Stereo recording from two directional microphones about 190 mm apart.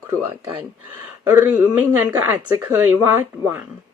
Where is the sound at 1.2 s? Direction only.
10° right (ahead or behind).